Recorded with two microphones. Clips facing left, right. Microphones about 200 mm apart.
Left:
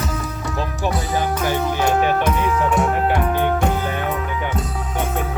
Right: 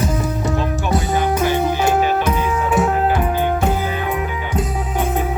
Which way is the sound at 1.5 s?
5° right (ahead or behind).